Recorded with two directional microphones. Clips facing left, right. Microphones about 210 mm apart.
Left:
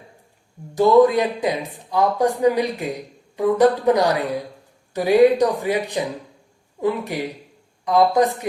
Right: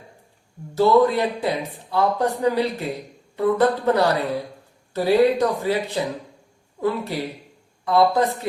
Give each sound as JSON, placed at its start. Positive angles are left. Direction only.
{"t": 0.8, "sound": "speech", "side_deg": 15}